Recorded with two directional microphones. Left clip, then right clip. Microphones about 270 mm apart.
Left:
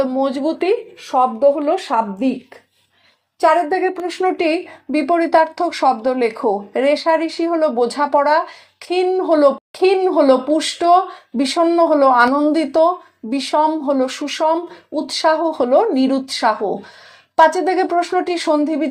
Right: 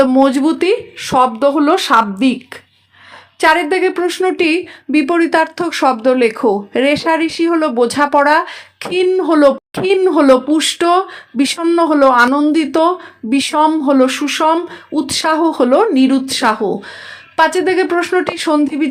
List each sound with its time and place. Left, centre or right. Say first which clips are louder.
0.1 s speech: right 7 dB; right
3.4 s speech: right 2 dB; right
3.8 s speech: right 5 dB; right